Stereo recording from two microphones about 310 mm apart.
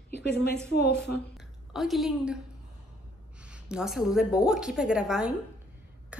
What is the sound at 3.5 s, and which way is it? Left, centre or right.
A woman's voice, centre.